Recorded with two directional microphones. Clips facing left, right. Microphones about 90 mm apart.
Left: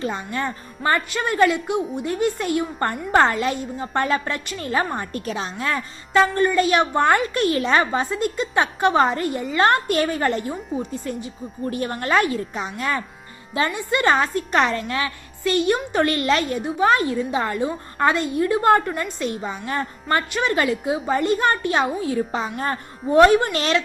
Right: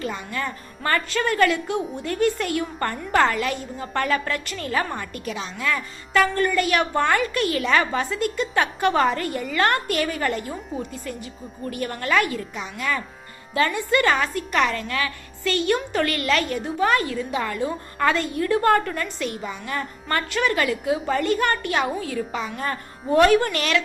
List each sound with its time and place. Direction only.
0.0 s a woman's voice: 30° left (ahead or behind)
0.8 s a woman's voice: 20° left (ahead or behind); by 13.0 s 35° left (ahead or behind)
13.5 s a woman's voice: 20° left (ahead or behind)
20.1 s a woman's voice: 20° left (ahead or behind)